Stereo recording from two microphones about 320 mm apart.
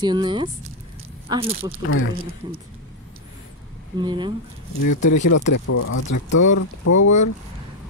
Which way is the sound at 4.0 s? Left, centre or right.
Centre.